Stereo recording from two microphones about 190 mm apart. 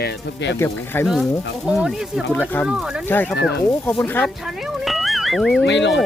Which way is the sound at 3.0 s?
10° left (ahead or behind).